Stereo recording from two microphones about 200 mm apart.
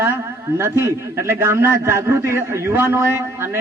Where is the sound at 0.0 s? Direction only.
10° right (ahead or behind).